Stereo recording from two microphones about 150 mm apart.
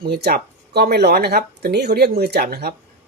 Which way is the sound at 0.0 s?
90° right.